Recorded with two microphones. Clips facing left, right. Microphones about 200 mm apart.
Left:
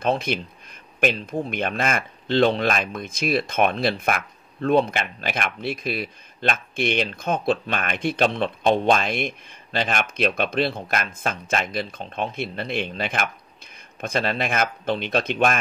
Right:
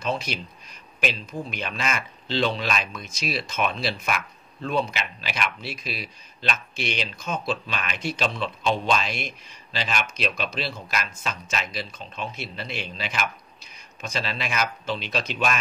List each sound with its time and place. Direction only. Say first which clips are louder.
0.0 s speech: left 5 dB; 55° left (ahead or behind)